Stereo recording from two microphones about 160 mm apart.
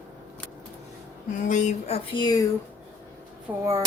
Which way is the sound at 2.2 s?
25° left (ahead or behind).